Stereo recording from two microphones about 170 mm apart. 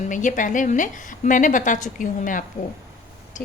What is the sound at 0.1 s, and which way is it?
A woman's voice, 50° left (ahead or behind).